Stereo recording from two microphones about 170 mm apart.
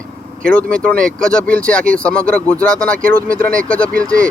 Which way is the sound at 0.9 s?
55° right (ahead or behind).